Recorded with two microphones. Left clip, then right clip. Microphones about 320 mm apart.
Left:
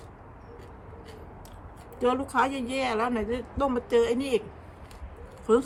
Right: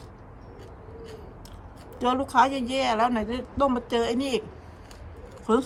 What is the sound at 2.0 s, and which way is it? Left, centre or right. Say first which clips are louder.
Speech: right 3 dB; centre.